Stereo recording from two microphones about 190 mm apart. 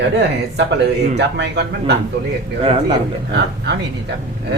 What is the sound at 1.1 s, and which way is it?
Speech, 60° right (ahead or behind).